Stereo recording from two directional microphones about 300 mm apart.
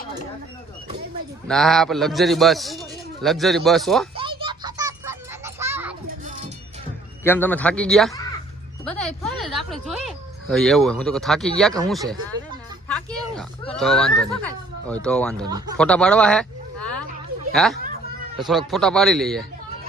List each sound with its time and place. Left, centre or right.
1.5 s a man's voice: centre
4.1 s a sound: centre
5.5 s children playing: centre
7.3 s a man's voice: centre
15.8 s a sound: centre
17.5 s a man's voice: centre